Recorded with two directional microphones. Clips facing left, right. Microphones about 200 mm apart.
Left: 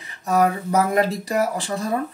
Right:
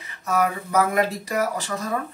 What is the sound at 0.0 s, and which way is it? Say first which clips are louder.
Speech: left 4 dB; 35° left (ahead or behind).